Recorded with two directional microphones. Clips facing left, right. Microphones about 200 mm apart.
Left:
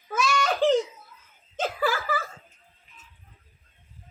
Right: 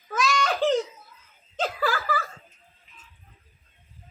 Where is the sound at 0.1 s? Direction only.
10° left (ahead or behind).